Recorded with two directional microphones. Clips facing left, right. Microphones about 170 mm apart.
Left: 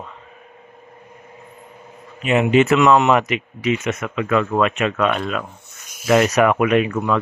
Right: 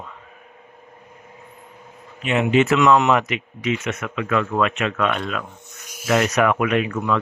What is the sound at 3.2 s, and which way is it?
Speech, 10° left (ahead or behind).